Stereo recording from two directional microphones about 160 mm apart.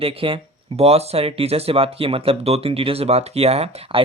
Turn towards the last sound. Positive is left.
turn(degrees=-40)  # may be behind; listen again after turning